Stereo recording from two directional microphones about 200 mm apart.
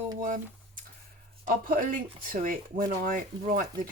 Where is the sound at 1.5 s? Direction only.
45° right (ahead or behind).